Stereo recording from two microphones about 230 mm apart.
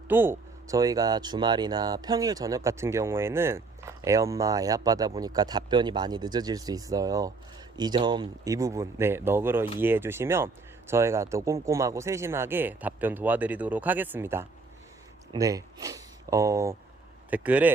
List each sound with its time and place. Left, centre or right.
0.1 s speech: centre